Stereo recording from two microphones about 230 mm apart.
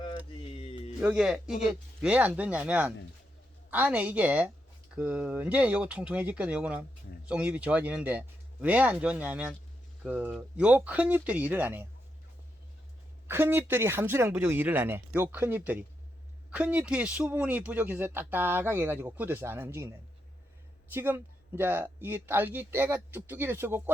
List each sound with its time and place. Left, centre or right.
0.0 s a sound: left
1.0 s a man's voice: centre
13.2 s a man's voice: centre
20.9 s a man's voice: centre